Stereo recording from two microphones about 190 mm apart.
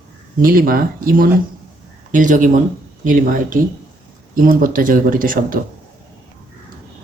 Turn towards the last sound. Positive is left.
turn(degrees=-45)  # may be behind; listen again after turning